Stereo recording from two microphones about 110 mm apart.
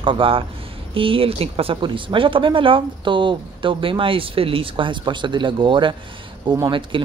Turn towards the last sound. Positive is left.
turn(degrees=-50)  # may be behind; listen again after turning